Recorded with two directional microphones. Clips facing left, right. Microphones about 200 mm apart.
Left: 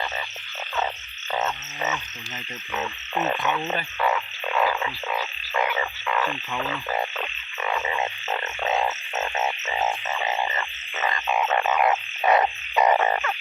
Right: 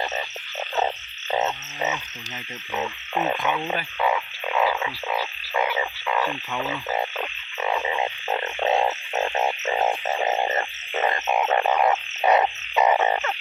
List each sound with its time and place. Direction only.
1.3 s frog: 20° right (ahead or behind)
8.6 s frog: 35° right (ahead or behind)
10.2 s frog: 45° right (ahead or behind); by 11.9 s 30° right (ahead or behind)
12.2 s frog: 20° right (ahead or behind)
12.7 s frog: 5° right (ahead or behind)
13.0 s frog: 20° right (ahead or behind)